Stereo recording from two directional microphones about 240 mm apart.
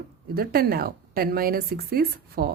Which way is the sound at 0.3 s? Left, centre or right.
Right.